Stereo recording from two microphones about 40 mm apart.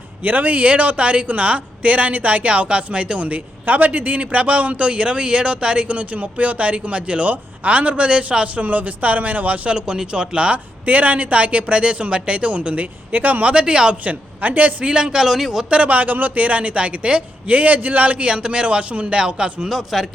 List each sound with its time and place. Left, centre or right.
0.2 s speech: right
8.6 s speech: right
9.6 s speech: right
10.8 s speech: right
13.4 s speech: right
14.0 s speech: right
14.8 s a man's voice: centre
15.7 s speech: right
19.7 s a man's voice: centre